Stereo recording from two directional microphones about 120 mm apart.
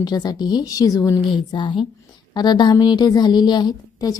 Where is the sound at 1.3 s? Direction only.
40° left (ahead or behind).